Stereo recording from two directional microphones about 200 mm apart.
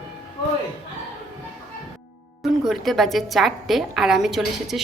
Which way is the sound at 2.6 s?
Centre (ahead or behind).